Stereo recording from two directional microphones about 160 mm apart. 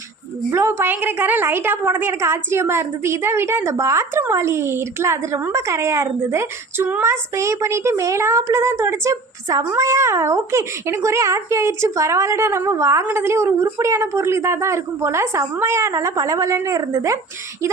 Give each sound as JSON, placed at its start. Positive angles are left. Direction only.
{"t": 0.5, "sound": "a woman's voice", "side_deg": -15}